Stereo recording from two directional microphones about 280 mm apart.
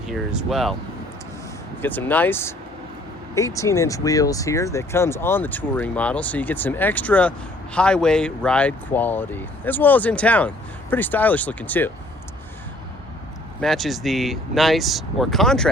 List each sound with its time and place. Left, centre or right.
0.1 s speech: centre
1.8 s speech: centre
13.6 s speech: centre